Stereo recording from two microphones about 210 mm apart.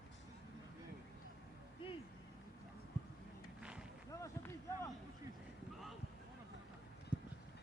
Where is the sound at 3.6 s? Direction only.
5° right (ahead or behind).